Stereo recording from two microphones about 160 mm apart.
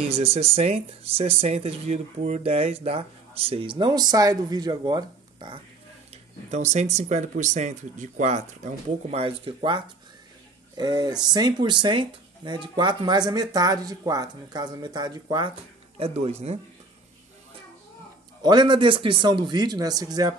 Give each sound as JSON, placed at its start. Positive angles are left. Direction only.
{"t": 0.1, "sound": "speech", "side_deg": -40}
{"t": 6.5, "sound": "speech", "side_deg": -45}
{"t": 16.0, "sound": "speech", "side_deg": -40}
{"t": 18.4, "sound": "speech", "side_deg": -25}